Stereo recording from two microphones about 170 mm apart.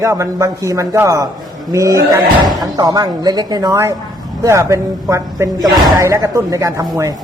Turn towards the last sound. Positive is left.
turn(degrees=-20)  # may be behind; listen again after turning